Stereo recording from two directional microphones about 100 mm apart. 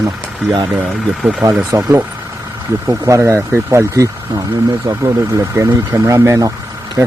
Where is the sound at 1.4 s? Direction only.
35° right (ahead or behind).